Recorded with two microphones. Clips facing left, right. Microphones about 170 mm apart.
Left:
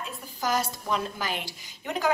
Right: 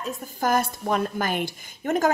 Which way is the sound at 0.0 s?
50° right (ahead or behind).